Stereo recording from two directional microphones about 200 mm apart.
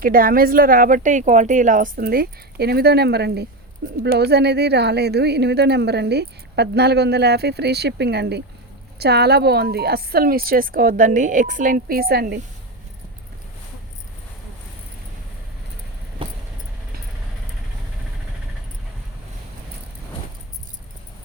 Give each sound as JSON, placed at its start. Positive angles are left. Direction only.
{"t": 0.0, "sound": "a woman's voice", "side_deg": -45}
{"t": 16.2, "sound": "vehicle", "side_deg": -25}